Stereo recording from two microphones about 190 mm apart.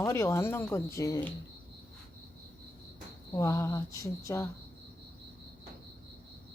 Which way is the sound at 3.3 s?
15° left (ahead or behind).